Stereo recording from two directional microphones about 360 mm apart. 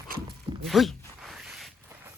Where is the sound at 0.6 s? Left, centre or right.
Centre.